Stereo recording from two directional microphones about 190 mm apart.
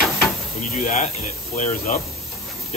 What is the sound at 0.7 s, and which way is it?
Speech, 40° left (ahead or behind).